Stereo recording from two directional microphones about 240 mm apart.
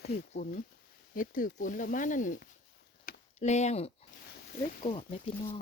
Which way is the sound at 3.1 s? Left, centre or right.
Left.